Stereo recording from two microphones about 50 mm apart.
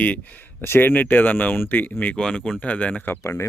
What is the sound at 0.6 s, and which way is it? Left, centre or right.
Speech, left.